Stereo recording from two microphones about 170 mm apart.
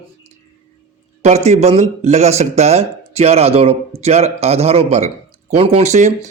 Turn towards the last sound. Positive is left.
turn(degrees=-45)  # may be behind; listen again after turning